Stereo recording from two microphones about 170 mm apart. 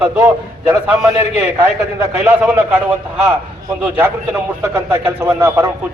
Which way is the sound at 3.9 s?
15° right (ahead or behind).